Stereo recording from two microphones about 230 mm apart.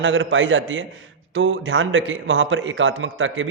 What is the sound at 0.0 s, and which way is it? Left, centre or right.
A man's voice, right.